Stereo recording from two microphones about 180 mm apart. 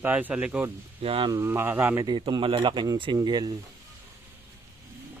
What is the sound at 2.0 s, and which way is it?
Speech, 25° right (ahead or behind).